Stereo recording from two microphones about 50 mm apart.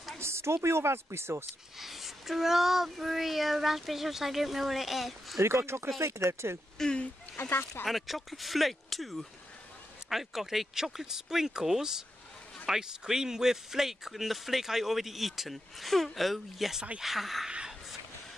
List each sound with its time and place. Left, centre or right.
0.2 s speech: right
1.8 s speech: centre
5.4 s speech: right
5.9 s speech: right
6.8 s speech: centre
7.3 s speech: left
7.8 s speech: centre